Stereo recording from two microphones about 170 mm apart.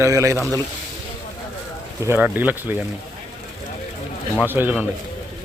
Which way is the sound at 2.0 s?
15° right (ahead or behind).